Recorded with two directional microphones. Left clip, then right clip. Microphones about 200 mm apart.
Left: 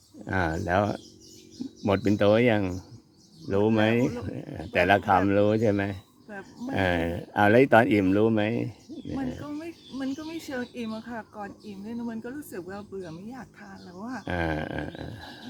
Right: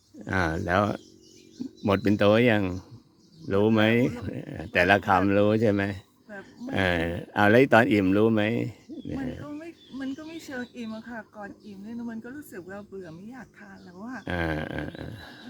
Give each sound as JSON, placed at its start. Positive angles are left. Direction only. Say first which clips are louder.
{"t": 0.3, "sound": "speech", "louder": "right 1 dB", "side_deg": -15}
{"t": 9.4, "sound": "speech", "louder": "left 2 dB", "side_deg": 0}